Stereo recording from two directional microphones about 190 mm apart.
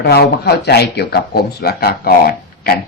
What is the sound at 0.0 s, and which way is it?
Speech, 60° left (ahead or behind).